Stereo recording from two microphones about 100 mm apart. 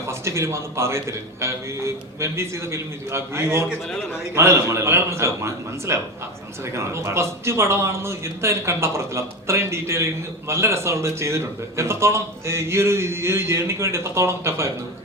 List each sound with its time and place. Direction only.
0.1 s a man's voice: 30° right (ahead or behind)